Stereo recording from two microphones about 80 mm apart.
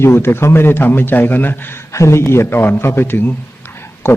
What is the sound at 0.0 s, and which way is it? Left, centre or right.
A man's voice, left.